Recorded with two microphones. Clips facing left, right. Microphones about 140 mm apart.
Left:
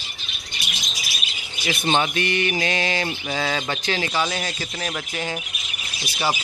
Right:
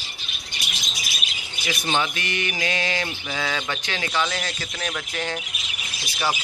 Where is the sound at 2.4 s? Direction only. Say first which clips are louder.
Left 4 dB; 40° left (ahead or behind).